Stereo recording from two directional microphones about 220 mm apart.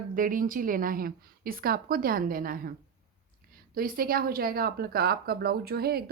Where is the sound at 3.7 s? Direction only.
40° right (ahead or behind).